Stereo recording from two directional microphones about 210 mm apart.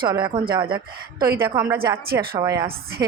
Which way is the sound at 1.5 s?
10° right (ahead or behind).